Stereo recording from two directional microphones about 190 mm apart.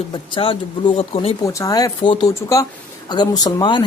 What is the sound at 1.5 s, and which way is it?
A woman's voice, 20° left (ahead or behind).